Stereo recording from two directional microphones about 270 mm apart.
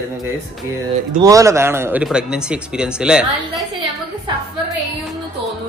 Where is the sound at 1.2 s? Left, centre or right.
Centre.